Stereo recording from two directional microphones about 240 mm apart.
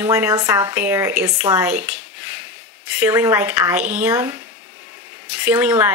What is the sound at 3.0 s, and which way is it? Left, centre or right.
Speech, centre.